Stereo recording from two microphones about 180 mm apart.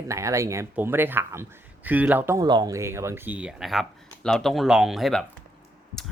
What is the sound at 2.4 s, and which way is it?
Speech, 25° right (ahead or behind).